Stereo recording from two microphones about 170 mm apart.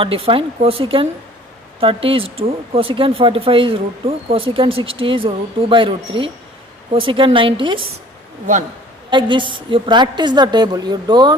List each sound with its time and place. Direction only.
0.0 s speech: 35° right (ahead or behind)
9.0 s a woman's voice: 30° right (ahead or behind)